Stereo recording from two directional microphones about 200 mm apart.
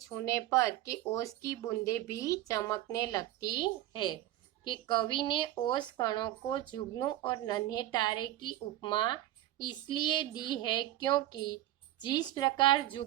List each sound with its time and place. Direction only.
0.0 s speech: 15° left (ahead or behind)